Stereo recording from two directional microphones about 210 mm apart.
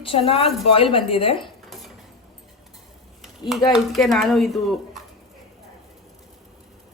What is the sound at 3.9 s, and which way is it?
Speech, centre (ahead or behind).